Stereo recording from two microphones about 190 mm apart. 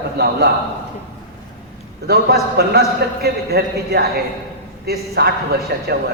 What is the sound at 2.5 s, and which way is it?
A man's voice, 55° right (ahead or behind).